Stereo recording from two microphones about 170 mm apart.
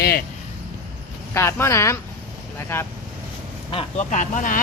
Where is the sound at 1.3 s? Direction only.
15° left (ahead or behind).